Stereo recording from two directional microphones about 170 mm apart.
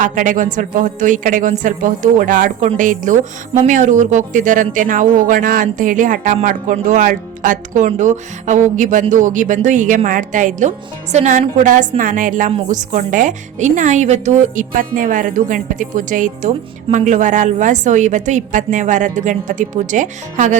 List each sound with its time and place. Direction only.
0.0 s speech: 50° right (ahead or behind)